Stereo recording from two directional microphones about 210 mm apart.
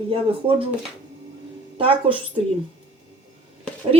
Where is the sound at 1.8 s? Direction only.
25° right (ahead or behind).